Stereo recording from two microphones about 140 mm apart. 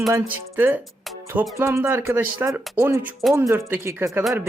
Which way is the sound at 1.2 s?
15° right (ahead or behind).